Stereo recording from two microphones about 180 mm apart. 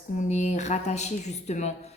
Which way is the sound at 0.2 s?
40° left (ahead or behind).